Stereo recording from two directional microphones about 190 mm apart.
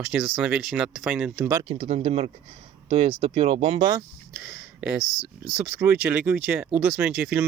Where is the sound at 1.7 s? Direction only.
35° right (ahead or behind).